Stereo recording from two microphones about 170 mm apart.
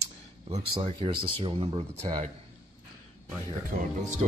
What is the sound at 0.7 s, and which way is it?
Speech, 30° right (ahead or behind).